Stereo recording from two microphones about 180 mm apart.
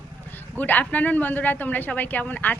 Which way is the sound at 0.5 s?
10° left (ahead or behind).